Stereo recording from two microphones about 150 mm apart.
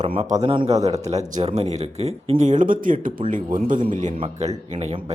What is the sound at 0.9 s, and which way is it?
Speech, 45° right (ahead or behind).